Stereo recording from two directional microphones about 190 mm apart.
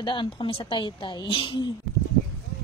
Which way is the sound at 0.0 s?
25° left (ahead or behind).